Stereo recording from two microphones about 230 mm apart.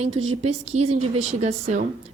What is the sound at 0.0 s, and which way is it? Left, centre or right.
A woman's voice, right.